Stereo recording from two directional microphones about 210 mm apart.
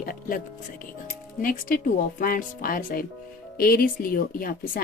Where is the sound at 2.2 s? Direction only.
40° left (ahead or behind).